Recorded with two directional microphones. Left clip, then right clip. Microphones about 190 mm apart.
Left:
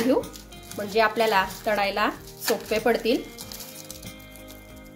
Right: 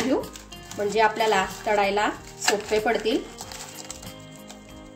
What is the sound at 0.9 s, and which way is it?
A woman's voice, 25° left (ahead or behind).